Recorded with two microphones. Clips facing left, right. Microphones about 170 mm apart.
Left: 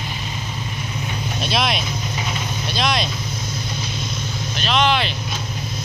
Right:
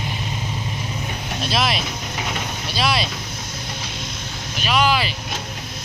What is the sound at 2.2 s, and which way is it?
Vehicle, 70° right (ahead or behind).